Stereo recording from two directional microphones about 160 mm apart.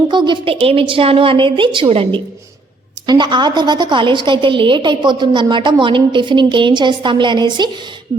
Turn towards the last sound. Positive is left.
turn(degrees=-25)  # may be behind; listen again after turning